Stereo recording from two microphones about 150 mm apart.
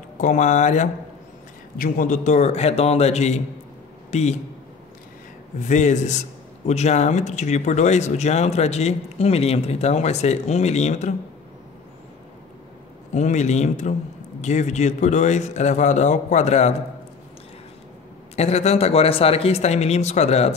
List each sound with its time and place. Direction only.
0.2 s speech: 55° left (ahead or behind)
5.6 s speech: 55° left (ahead or behind)
13.1 s speech: 50° left (ahead or behind)
18.3 s speech: 45° left (ahead or behind)